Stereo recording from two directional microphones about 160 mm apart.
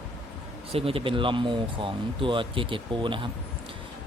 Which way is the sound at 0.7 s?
35° right (ahead or behind).